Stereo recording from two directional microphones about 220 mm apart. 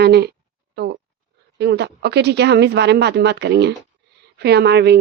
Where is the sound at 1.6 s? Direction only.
50° right (ahead or behind).